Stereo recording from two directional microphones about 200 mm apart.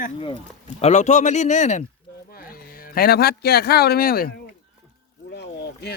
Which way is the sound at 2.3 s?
45° left (ahead or behind).